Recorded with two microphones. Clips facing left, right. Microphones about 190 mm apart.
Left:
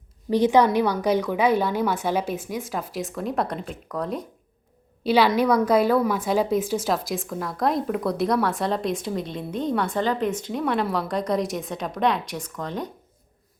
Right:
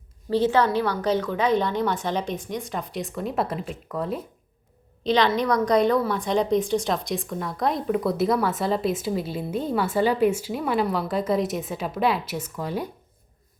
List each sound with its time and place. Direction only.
0.3 s a woman's voice: 15° left (ahead or behind); by 4.3 s centre (ahead or behind)
5.0 s a woman's voice: 10° left (ahead or behind); by 12.9 s 10° right (ahead or behind)